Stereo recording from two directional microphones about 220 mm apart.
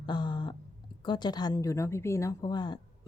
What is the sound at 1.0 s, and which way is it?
Speech, 20° left (ahead or behind).